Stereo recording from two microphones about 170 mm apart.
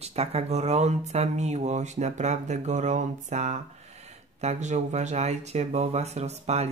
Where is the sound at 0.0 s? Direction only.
35° right (ahead or behind).